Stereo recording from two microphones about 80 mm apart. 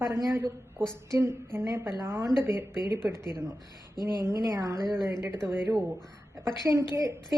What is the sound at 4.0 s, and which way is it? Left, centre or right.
Speech, left.